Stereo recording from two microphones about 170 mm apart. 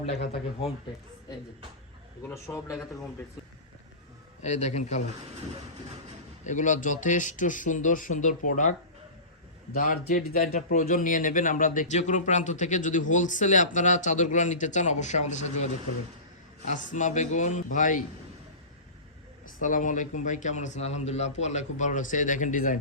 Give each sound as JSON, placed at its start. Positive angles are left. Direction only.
{"t": 2.3, "sound": "a man's voice", "side_deg": 15}
{"t": 4.4, "sound": "speech", "side_deg": 45}
{"t": 6.4, "sound": "speech", "side_deg": 45}
{"t": 9.7, "sound": "speech", "side_deg": 55}
{"t": 16.6, "sound": "speech", "side_deg": 50}
{"t": 19.5, "sound": "speech", "side_deg": 50}